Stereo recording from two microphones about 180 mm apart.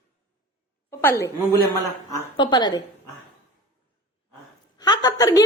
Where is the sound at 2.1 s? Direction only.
25° left (ahead or behind).